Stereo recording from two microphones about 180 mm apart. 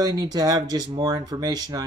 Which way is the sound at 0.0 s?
20° right (ahead or behind).